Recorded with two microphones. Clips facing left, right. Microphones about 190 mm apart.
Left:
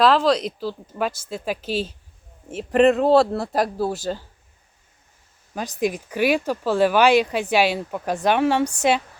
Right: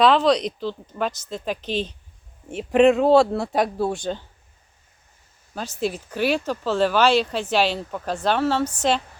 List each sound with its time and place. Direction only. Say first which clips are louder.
0.0 s speech: even; centre (ahead or behind)
5.5 s speech: left 2 dB; 15° left (ahead or behind)